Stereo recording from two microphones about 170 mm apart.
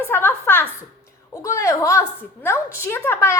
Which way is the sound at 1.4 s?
15° left (ahead or behind).